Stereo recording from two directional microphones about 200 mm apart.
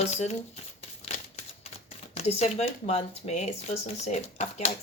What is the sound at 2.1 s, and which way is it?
Speech, 30° left (ahead or behind).